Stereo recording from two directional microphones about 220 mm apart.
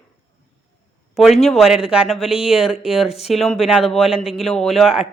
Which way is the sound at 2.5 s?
Centre (ahead or behind).